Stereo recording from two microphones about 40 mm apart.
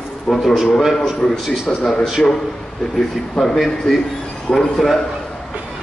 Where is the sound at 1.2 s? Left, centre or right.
Centre.